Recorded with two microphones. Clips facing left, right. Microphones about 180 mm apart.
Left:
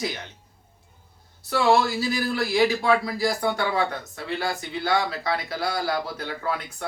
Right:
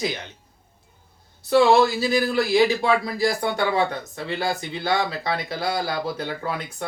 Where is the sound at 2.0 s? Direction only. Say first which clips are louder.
Right 4 dB; 20° right (ahead or behind).